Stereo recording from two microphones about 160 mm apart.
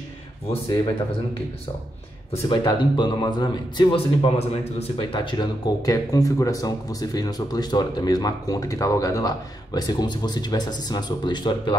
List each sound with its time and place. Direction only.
2.3 s speech: 30° left (ahead or behind)